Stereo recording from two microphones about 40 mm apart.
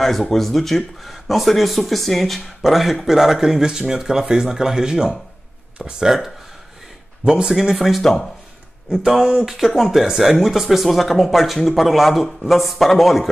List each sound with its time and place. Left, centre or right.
0.3 s speech: centre; by 6.0 s right
6.0 s speech: centre
7.2 s speech: centre
7.5 s speech: centre
8.0 s speech: centre
9.5 s speech: centre